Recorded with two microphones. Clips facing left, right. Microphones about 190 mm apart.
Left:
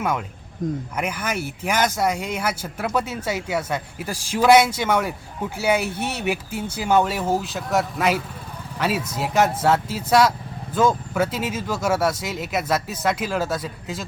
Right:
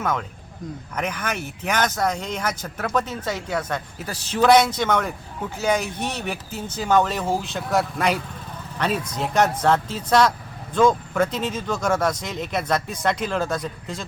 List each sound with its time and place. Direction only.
0.0 s speech: 10° left (ahead or behind)
0.6 s speech: 45° left (ahead or behind)
0.9 s speech: 10° left (ahead or behind)